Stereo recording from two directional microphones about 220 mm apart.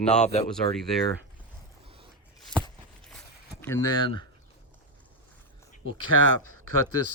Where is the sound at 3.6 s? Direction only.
15° left (ahead or behind).